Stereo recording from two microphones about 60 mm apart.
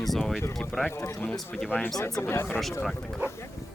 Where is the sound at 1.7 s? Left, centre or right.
Left.